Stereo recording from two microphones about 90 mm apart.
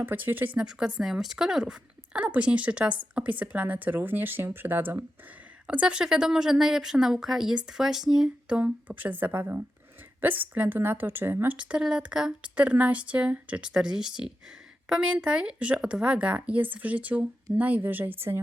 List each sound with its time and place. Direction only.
0.0 s a woman's voice: 20° right (ahead or behind)